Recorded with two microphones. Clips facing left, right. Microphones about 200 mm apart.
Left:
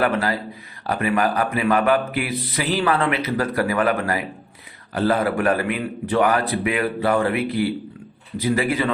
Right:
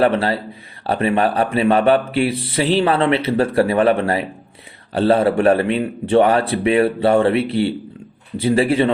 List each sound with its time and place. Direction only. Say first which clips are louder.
0.0 s speech: right 5 dB; 30° right (ahead or behind)